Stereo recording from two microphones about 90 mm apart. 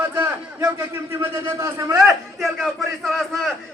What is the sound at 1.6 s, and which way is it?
Speech, 35° right (ahead or behind).